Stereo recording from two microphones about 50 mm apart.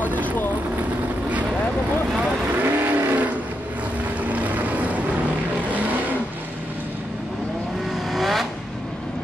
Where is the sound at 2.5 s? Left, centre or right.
Right.